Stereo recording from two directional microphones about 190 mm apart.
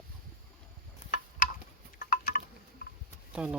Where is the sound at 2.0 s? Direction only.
50° left (ahead or behind).